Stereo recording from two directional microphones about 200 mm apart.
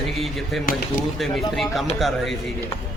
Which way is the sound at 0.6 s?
45° left (ahead or behind).